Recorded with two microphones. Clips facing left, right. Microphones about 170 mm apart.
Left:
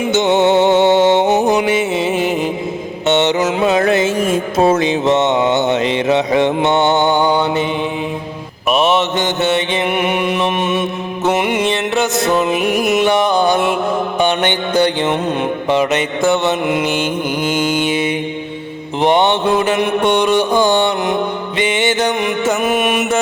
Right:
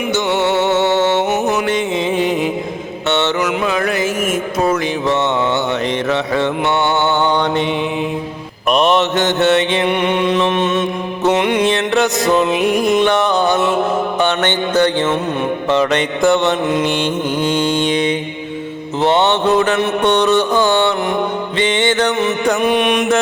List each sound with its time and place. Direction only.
0.1 s music: 20° left (ahead or behind); by 2.5 s centre (ahead or behind)
3.1 s music: 20° left (ahead or behind)
8.7 s mantra: 5° left (ahead or behind)